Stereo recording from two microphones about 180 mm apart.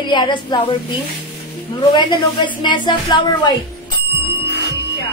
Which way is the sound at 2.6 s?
25° left (ahead or behind).